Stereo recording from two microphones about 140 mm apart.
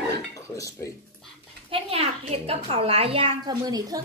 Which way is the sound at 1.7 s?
45° right (ahead or behind).